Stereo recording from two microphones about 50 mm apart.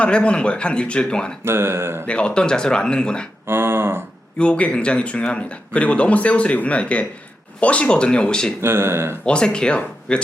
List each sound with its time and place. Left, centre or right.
0.0 s speech: left
1.5 s speech: right
2.0 s speech: left
3.4 s cattle: right
4.4 s speech: left
8.6 s speech: right
9.2 s speech: centre